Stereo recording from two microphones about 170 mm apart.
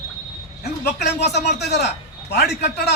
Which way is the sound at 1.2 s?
75° left (ahead or behind).